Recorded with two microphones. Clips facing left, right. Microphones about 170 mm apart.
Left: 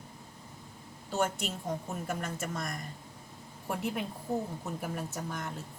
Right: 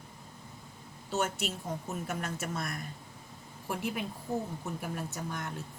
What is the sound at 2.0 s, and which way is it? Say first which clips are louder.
A woman's voice: left 2 dB; 5° right (ahead or behind).